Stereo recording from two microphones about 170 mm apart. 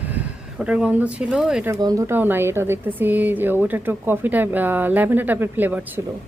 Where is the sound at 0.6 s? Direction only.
5° right (ahead or behind).